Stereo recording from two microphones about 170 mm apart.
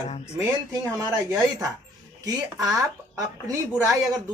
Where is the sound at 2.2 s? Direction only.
20° right (ahead or behind).